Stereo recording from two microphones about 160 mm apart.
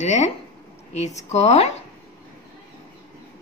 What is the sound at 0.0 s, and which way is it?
Speech, 45° left (ahead or behind).